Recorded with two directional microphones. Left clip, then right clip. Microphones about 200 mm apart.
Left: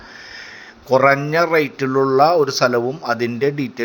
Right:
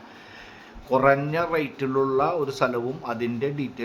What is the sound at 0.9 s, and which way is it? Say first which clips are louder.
Speech: left 6 dB; 20° left (ahead or behind).